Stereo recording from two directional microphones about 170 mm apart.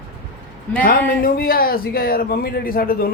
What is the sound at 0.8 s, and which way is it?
A man's voice, 55° left (ahead or behind).